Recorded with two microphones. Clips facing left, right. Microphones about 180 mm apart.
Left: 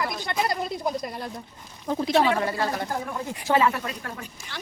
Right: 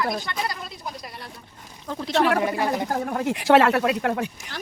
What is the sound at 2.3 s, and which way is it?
Speech, 15° right (ahead or behind).